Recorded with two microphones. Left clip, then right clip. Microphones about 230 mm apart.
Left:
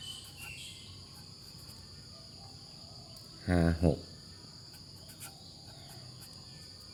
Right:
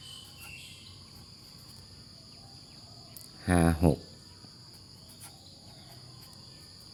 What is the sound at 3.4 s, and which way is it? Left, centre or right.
Cricket, centre.